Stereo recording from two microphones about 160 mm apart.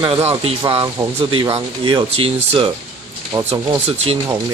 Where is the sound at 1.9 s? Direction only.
35° right (ahead or behind).